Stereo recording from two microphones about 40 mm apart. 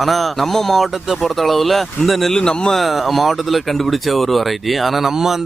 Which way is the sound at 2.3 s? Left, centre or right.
Centre.